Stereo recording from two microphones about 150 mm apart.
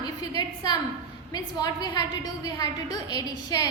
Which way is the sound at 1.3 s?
25° left (ahead or behind).